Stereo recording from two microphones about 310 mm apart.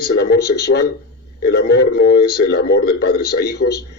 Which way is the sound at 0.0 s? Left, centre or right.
Left.